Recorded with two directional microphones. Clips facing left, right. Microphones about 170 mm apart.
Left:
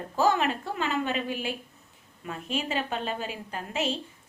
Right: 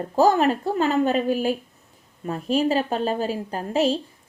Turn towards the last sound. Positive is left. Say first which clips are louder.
# right 9 dB
turn(degrees=-35)  # may be behind; listen again after turning